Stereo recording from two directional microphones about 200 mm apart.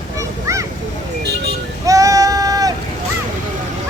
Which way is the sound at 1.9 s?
15° right (ahead or behind).